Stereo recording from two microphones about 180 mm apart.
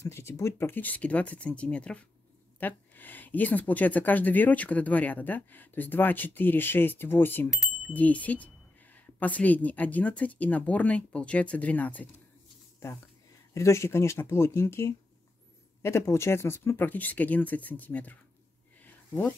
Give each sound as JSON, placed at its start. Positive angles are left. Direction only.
{"t": 0.0, "sound": "speech", "side_deg": 15}
{"t": 13.5, "sound": "speech", "side_deg": 15}
{"t": 18.8, "sound": "a sound", "side_deg": 10}